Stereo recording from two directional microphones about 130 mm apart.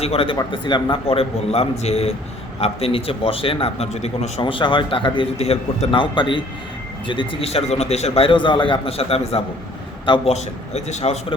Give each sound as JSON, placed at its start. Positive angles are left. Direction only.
{"t": 0.0, "sound": "a man's voice", "side_deg": 50}